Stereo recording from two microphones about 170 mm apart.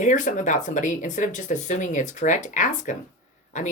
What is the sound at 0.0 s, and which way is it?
Speech, 50° left (ahead or behind).